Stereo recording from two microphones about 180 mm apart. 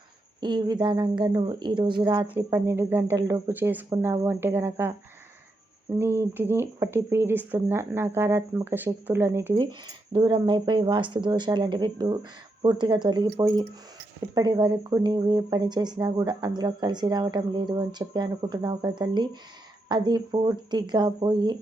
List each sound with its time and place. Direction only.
0.3 s speech: 25° right (ahead or behind)
2.3 s speech: 10° right (ahead or behind)
6.0 s speech: 10° right (ahead or behind)
9.6 s speech: 25° right (ahead or behind)